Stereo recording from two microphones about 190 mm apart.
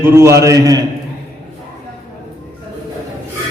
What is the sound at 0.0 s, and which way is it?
Speech, 15° right (ahead or behind).